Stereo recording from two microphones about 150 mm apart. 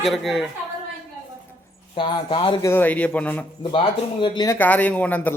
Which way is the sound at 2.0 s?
30° left (ahead or behind).